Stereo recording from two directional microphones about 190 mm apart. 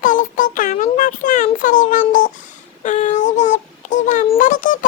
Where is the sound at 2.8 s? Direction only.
40° left (ahead or behind).